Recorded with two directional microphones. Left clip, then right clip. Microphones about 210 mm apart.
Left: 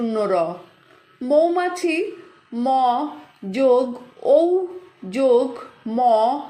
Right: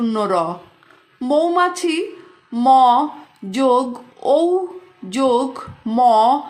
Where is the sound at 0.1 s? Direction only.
25° right (ahead or behind).